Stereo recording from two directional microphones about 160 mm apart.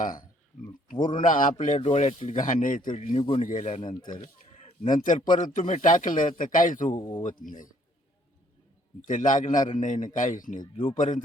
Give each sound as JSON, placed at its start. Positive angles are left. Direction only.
{"t": 0.0, "sound": "a sound", "side_deg": 60}
{"t": 0.9, "sound": "speech", "side_deg": 30}
{"t": 1.2, "sound": "speech", "side_deg": 55}
{"t": 2.4, "sound": "a man's voice", "side_deg": 55}
{"t": 3.2, "sound": "speech", "side_deg": 35}
{"t": 3.4, "sound": "speech", "side_deg": 50}
{"t": 3.8, "sound": "speech", "side_deg": 30}
{"t": 4.6, "sound": "a man's voice", "side_deg": 50}
{"t": 6.9, "sound": "speech", "side_deg": 30}
{"t": 7.2, "sound": "a man's voice", "side_deg": 55}
{"t": 9.0, "sound": "speech", "side_deg": 55}
{"t": 10.6, "sound": "speech", "side_deg": 30}
{"t": 10.9, "sound": "speech", "side_deg": 50}